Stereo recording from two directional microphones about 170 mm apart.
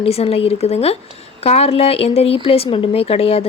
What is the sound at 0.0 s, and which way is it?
Speech, 35° left (ahead or behind).